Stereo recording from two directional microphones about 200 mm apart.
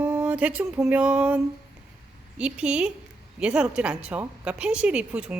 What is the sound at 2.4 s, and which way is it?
A woman's voice, 5° right (ahead or behind).